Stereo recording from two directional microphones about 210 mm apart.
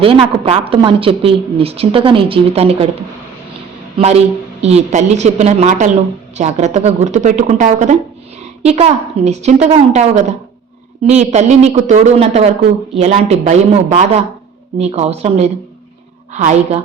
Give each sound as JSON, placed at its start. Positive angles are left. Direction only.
{"t": 0.0, "sound": "a woman's voice", "side_deg": -25}
{"t": 3.9, "sound": "a woman's voice", "side_deg": -30}